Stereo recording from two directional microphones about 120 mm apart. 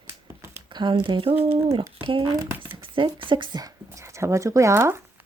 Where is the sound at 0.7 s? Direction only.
40° right (ahead or behind).